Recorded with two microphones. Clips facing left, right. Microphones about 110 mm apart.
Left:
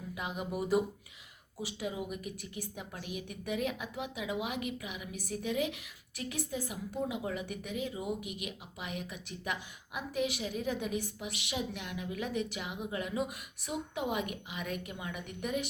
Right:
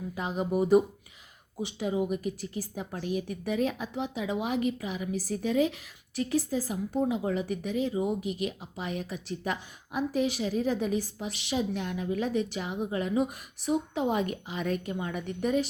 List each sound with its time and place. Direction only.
0.1 s speech: 35° right (ahead or behind)